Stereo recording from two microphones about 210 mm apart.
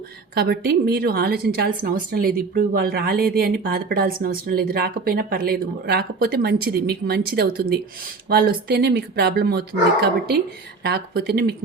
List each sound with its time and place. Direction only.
0.3 s a woman's voice: 50° right (ahead or behind)